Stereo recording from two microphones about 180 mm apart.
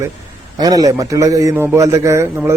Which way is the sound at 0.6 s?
20° right (ahead or behind).